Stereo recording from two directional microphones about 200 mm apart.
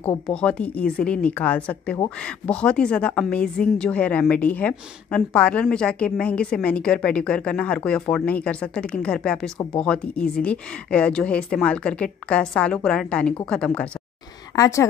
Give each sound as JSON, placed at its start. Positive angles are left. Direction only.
{"t": 0.0, "sound": "a woman's voice", "side_deg": 5}